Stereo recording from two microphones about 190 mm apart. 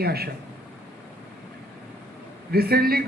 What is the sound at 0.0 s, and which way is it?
Speech, 55° right (ahead or behind).